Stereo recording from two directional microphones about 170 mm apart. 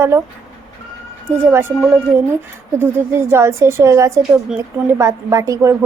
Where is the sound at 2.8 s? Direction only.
15° right (ahead or behind).